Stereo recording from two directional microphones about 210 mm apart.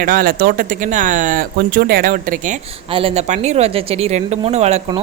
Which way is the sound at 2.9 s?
30° right (ahead or behind).